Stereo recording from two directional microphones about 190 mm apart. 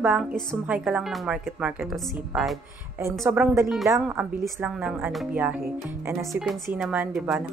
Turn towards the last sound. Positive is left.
turn(degrees=-5)  # may be behind; listen again after turning